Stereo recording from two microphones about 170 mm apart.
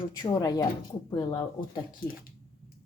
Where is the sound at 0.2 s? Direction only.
20° left (ahead or behind).